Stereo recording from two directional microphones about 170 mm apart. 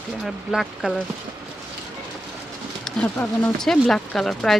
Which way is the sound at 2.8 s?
5° left (ahead or behind).